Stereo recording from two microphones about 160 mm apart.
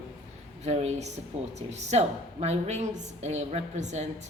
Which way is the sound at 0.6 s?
45° right (ahead or behind).